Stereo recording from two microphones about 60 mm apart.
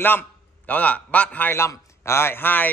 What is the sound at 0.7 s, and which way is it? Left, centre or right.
Speech, left.